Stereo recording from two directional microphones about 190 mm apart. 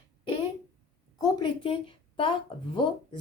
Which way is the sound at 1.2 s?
25° left (ahead or behind).